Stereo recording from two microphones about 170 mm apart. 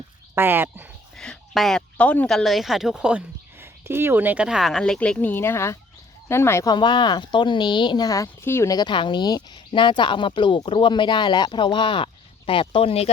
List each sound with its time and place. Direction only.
0.3 s speech: 10° right (ahead or behind)
1.1 s speech: 5° left (ahead or behind); by 13.1 s 35° left (ahead or behind)